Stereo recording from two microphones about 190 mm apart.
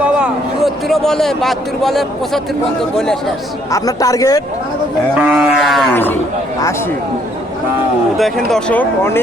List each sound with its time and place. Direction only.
0.0 s a man's voice: 5° right (ahead or behind)
3.0 s sheep: 5° left (ahead or behind)
3.7 s speech: 20° left (ahead or behind)
5.1 s sheep: 5° right (ahead or behind)
5.9 s speech: 10° left (ahead or behind)
8.2 s speech: centre (ahead or behind)